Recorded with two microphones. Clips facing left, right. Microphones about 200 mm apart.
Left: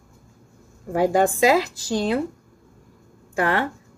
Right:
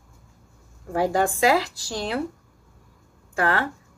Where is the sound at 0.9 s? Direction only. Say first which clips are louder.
Left 3 dB; 20° left (ahead or behind).